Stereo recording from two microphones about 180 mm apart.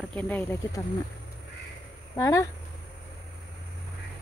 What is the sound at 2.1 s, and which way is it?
Speech, 15° left (ahead or behind).